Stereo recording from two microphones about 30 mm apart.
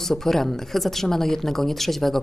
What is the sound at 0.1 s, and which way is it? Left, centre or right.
A woman's voice, centre.